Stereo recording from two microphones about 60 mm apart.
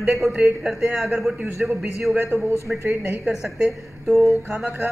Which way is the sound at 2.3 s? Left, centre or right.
Right.